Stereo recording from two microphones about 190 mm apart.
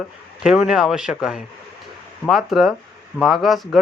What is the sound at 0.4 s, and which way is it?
Speech, 5° right (ahead or behind).